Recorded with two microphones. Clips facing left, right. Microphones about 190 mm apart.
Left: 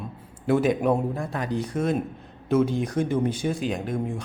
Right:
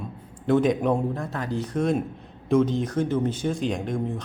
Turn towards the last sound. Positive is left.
turn(degrees=5)  # may be behind; listen again after turning